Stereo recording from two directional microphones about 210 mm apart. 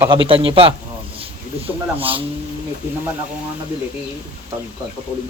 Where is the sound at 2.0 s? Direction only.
25° right (ahead or behind).